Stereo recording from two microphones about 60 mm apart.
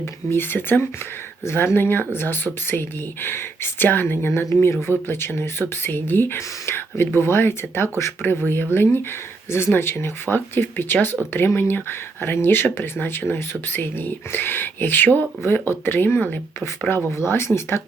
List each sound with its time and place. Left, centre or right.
0.3 s speech: left
4.6 s speech: left
5.0 s speech: left
8.7 s speech: left